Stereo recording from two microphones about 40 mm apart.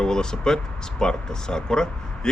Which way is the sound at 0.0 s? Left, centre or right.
Centre.